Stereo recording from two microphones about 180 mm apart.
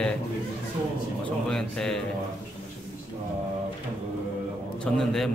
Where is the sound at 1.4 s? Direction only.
5° left (ahead or behind).